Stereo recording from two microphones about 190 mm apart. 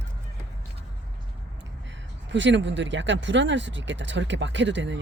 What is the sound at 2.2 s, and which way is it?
Speech, 70° right (ahead or behind).